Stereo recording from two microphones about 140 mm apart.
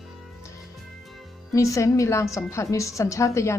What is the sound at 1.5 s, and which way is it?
A woman's voice, 20° left (ahead or behind).